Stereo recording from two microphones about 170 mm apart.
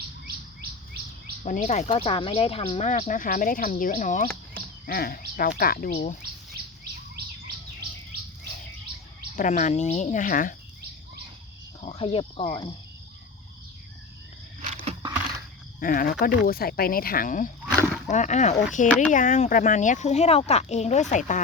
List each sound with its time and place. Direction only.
1.5 s speech: 50° left (ahead or behind)
1.9 s speech: 30° left (ahead or behind); by 6.1 s 50° left (ahead or behind)
9.3 s speech: 45° left (ahead or behind)
11.8 s speech: 35° left (ahead or behind)
14.8 s a sound: 30° right (ahead or behind)
15.8 s speech: 55° left (ahead or behind)